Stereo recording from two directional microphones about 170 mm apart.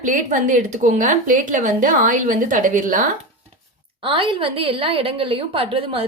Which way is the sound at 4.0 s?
30° right (ahead or behind).